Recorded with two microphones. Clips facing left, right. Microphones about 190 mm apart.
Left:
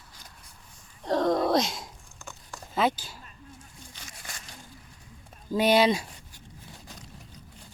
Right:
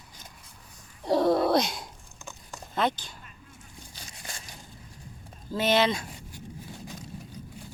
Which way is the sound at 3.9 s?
30° right (ahead or behind).